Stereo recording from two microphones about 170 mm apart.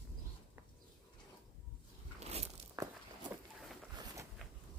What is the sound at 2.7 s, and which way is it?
Walk, 20° right (ahead or behind).